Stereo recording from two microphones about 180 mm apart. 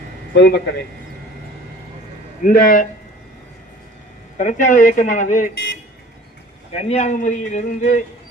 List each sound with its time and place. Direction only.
0.3 s a man's voice: 70° left (ahead or behind)
2.4 s a man's voice: 50° left (ahead or behind)
4.4 s a man's voice: 45° left (ahead or behind)
6.7 s a man's voice: 35° left (ahead or behind)